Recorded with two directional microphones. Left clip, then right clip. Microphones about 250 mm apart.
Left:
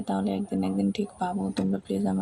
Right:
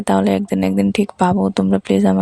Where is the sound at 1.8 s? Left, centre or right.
Right.